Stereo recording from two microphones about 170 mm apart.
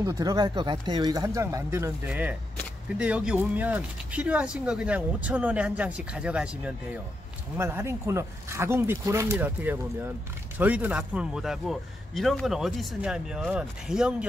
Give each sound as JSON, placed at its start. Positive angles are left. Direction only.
{"t": 0.0, "sound": "speech", "side_deg": -20}